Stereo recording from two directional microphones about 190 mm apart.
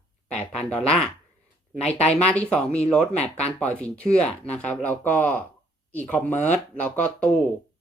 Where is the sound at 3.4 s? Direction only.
35° left (ahead or behind).